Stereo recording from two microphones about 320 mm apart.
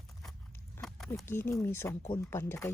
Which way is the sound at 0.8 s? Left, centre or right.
Centre.